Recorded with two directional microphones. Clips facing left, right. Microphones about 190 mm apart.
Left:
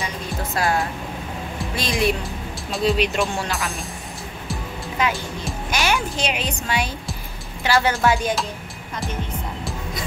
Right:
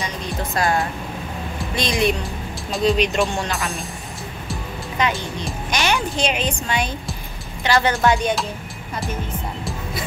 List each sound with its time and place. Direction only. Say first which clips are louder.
0.6 s speech: right 1 dB; 5° left (ahead or behind)